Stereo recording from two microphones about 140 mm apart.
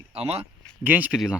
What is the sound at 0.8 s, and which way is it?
Speech, 10° right (ahead or behind).